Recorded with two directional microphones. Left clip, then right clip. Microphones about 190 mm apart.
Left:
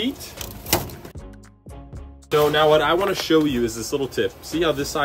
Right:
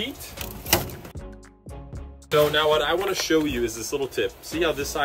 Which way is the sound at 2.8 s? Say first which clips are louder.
Left 4 dB; 30° left (ahead or behind).